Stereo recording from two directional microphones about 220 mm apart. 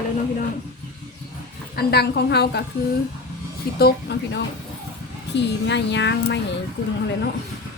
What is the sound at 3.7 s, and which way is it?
Speech, 45° left (ahead or behind).